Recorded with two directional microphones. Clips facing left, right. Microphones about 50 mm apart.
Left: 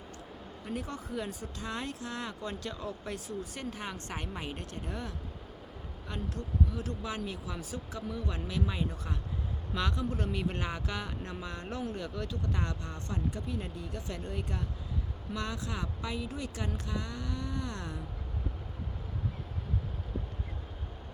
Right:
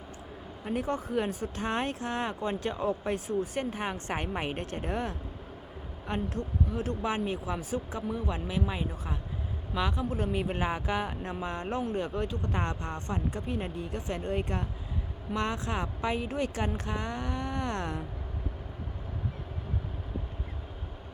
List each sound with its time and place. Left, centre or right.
0.6 s speech: right